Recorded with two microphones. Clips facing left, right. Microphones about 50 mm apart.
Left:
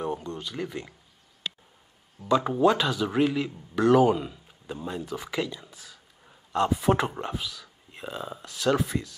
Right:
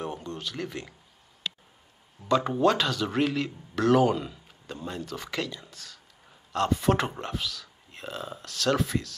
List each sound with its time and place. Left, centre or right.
0.2 s a sound: centre
0.7 s speech: centre
2.2 s speech: centre